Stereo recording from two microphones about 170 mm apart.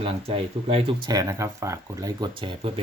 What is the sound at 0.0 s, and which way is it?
Speech, 35° right (ahead or behind).